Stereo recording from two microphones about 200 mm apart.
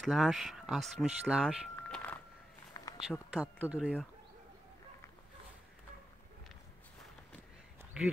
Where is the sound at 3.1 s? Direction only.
5° right (ahead or behind).